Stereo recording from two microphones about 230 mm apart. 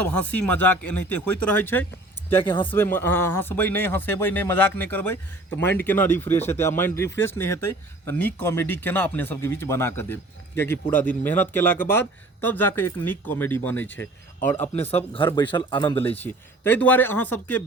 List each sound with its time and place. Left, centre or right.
0.0 s speech: centre
2.4 s speech: left
2.6 s speech: centre
14.8 s speech: left
15.2 s speech: centre
16.0 s speech: centre